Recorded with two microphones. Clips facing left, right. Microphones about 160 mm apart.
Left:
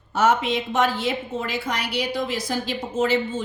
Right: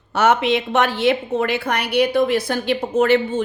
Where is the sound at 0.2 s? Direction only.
70° right (ahead or behind).